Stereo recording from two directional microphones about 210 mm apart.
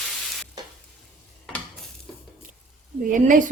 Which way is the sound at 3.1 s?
40° right (ahead or behind).